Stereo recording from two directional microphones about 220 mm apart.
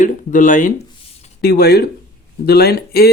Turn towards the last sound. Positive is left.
turn(degrees=45)  # may be behind; listen again after turning